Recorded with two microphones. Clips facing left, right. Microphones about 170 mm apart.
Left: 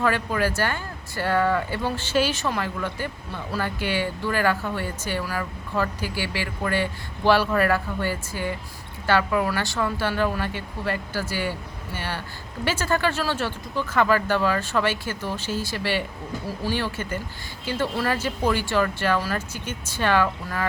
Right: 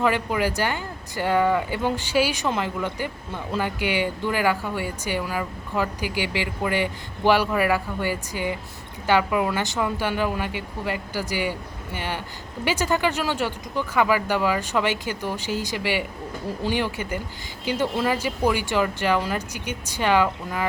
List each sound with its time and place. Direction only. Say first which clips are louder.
0.0 s speech: right 1 dB; 15° right (ahead or behind)